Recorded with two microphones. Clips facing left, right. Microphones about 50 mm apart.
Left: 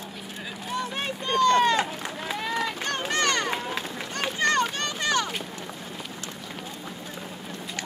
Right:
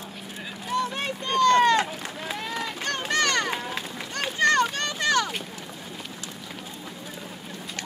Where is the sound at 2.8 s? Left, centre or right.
Left.